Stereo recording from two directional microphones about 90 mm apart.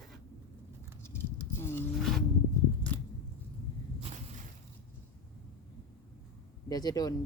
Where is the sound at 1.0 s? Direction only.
25° left (ahead or behind).